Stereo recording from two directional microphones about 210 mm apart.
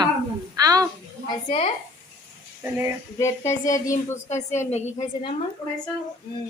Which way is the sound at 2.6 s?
15° right (ahead or behind).